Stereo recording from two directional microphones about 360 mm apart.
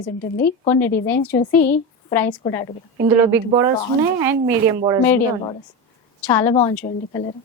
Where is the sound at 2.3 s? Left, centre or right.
Centre.